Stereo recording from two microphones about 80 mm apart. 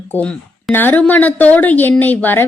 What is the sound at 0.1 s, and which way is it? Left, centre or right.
A woman's voice, centre.